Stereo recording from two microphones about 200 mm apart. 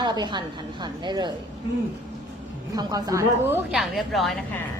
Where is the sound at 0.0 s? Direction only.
20° right (ahead or behind).